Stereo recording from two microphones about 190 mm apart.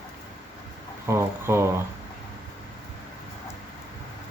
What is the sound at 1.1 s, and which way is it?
Speech, 15° right (ahead or behind).